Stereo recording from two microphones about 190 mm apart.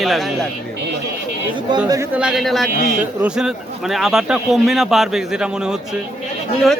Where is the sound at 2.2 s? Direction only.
Centre (ahead or behind).